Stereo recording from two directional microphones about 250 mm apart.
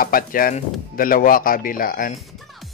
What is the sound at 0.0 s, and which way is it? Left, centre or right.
Speech, left.